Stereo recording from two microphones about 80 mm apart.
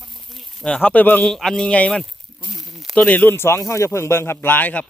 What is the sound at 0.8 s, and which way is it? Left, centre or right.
Speech, left.